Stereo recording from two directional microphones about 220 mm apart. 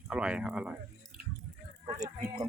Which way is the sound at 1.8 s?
15° right (ahead or behind).